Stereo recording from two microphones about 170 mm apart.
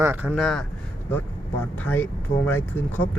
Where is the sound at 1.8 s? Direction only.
10° left (ahead or behind).